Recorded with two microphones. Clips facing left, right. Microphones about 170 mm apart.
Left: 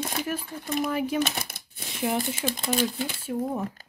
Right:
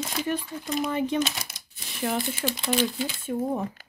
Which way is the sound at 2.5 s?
45° left (ahead or behind).